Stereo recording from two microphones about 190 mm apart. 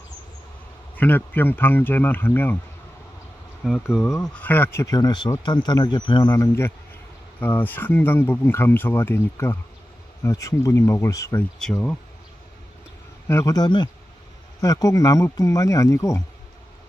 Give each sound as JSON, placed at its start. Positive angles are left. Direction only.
{"t": 0.9, "sound": "speech", "side_deg": 10}
{"t": 3.6, "sound": "speech", "side_deg": -5}
{"t": 13.3, "sound": "speech", "side_deg": 15}